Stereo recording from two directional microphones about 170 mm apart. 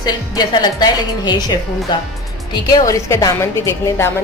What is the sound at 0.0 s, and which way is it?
A woman's voice, 25° left (ahead or behind).